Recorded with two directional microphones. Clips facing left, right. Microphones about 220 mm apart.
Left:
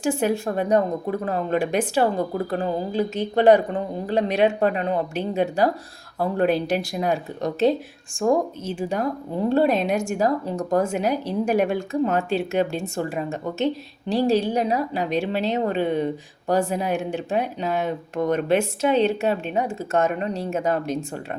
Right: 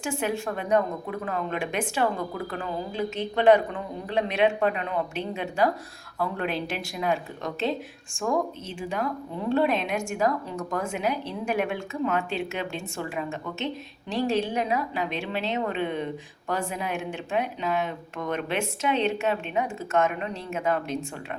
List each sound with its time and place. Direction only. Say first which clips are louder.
0.0 s speech: left 6 dB; 40° left (ahead or behind)